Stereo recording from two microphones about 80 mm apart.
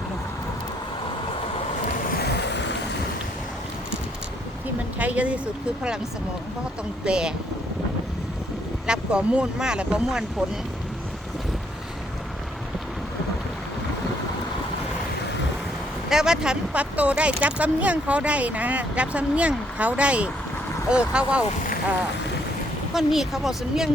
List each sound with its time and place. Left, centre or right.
4.9 s speech: centre
7.0 s speech: centre
8.9 s speech: centre
16.0 s speech: centre
23.0 s speech: centre